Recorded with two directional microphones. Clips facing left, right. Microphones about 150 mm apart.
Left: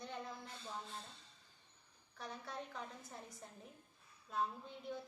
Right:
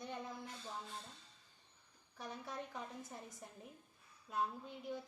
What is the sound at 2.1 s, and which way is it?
A woman's voice, 15° right (ahead or behind).